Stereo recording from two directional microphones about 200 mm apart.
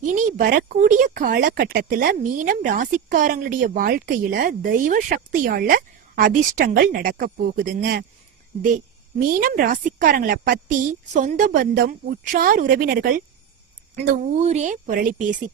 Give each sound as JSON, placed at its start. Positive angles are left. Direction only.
{"t": 0.0, "sound": "speech", "side_deg": -40}
{"t": 9.2, "sound": "speech", "side_deg": -45}